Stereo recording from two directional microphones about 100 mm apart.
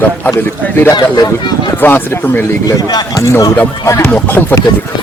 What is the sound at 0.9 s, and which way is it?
Speech, 50° left (ahead or behind).